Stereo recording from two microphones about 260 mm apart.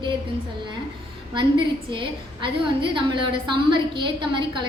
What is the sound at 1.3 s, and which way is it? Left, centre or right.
A woman's voice, centre.